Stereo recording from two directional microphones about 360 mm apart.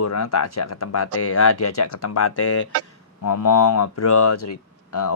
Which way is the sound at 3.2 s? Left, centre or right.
Left.